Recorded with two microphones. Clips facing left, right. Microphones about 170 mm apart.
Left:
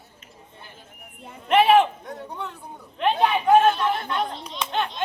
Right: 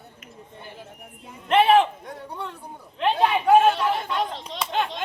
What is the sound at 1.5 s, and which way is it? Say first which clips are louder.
Speech: left 1 dB; 5° left (ahead or behind).